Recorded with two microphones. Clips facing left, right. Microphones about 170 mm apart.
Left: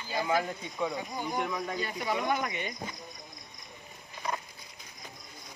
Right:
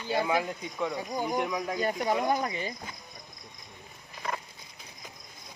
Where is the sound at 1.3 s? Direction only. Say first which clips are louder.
Right 1 dB; 10° right (ahead or behind).